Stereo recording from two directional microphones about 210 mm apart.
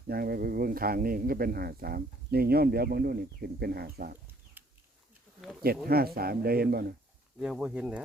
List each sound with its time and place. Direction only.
0.1 s speech: 45° right (ahead or behind)
4.6 s a sound: 10° right (ahead or behind)
5.6 s speech: 45° right (ahead or behind)
7.3 s speech: centre (ahead or behind)